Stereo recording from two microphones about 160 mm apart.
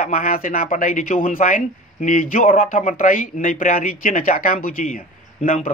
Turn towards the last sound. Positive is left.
turn(degrees=55)  # may be behind; listen again after turning